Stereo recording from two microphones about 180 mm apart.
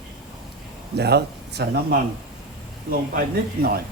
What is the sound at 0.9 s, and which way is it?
Speech, 65° right (ahead or behind).